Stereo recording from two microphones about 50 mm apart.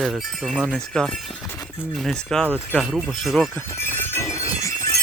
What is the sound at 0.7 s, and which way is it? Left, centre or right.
Speech, centre.